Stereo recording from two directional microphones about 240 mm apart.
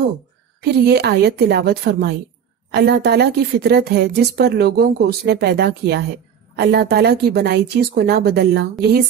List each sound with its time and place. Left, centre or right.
0.6 s a woman's voice: right